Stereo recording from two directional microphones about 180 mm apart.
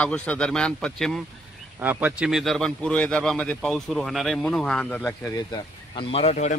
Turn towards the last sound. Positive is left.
turn(degrees=35)  # may be behind; listen again after turning